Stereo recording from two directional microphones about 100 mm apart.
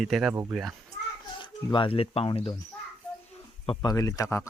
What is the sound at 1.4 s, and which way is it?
Speech, 55° left (ahead or behind).